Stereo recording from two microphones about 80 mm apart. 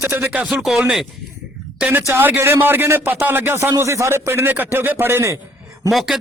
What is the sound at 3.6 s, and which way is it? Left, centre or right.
Speech, right.